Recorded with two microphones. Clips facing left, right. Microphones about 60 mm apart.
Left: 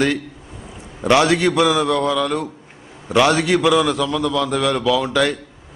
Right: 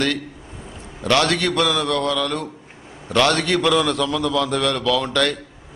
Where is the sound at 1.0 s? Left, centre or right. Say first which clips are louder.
Left 4 dB; centre.